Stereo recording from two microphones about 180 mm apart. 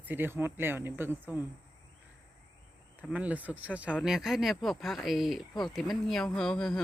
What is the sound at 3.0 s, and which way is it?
Speech, 10° right (ahead or behind).